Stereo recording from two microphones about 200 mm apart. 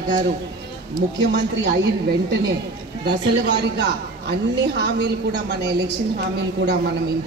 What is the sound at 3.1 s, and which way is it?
A woman's voice, 60° right (ahead or behind).